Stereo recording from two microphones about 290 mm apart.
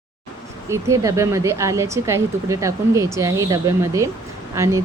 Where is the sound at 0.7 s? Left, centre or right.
Centre.